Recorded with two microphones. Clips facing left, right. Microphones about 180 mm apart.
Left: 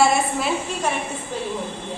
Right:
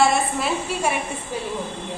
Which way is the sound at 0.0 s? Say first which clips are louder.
Left 1 dB; centre (ahead or behind).